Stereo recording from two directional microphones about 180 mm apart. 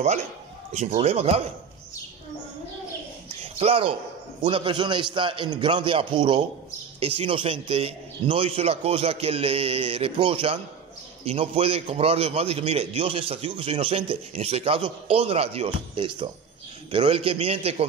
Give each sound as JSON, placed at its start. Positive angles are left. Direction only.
{"t": 0.7, "sound": "a man's voice", "side_deg": -40}
{"t": 3.5, "sound": "a man's voice", "side_deg": -30}